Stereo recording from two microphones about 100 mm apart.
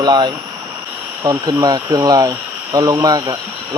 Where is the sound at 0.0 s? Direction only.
45° right (ahead or behind).